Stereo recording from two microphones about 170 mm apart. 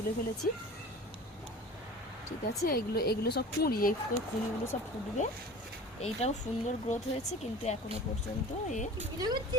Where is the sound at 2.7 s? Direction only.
65° left (ahead or behind).